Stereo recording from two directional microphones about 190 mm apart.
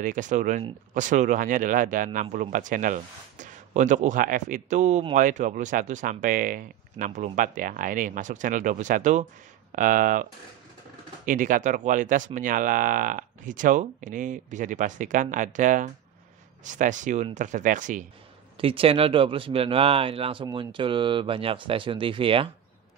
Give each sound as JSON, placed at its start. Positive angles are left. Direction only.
{"t": 0.0, "sound": "speech", "side_deg": -45}
{"t": 11.2, "sound": "speech", "side_deg": -45}
{"t": 18.6, "sound": "speech", "side_deg": -30}